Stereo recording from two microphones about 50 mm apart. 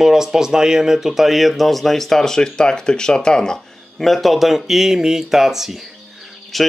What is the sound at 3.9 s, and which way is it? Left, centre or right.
Speech, centre.